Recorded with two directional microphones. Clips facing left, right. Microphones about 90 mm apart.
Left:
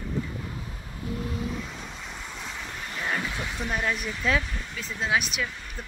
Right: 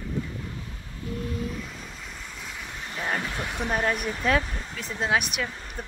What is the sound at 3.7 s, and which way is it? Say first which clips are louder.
Speech: right 3 dB; 45° right (ahead or behind).